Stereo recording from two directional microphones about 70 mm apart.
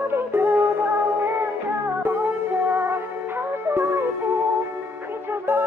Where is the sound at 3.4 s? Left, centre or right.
Right.